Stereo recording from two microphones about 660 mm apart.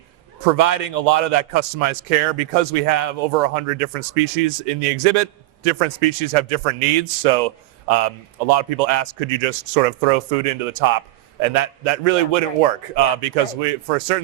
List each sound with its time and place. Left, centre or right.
0.5 s a man's voice: right
7.9 s a man's voice: right
13.2 s a man's voice: right